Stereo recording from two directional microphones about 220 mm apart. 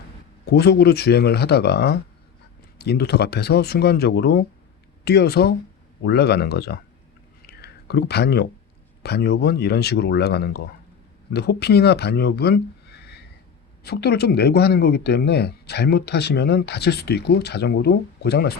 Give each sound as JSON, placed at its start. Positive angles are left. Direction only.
{"t": 0.4, "sound": "speech", "side_deg": 50}
{"t": 7.4, "sound": "a sound", "side_deg": 50}
{"t": 9.0, "sound": "speech", "side_deg": 50}